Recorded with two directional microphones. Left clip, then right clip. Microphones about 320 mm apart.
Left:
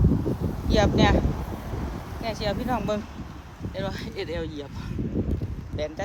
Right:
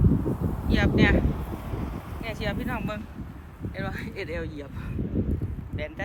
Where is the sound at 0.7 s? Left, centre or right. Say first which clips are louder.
Left 2 dB; centre.